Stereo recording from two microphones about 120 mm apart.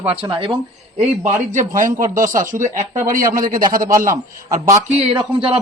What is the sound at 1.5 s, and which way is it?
A man's voice, 90° right.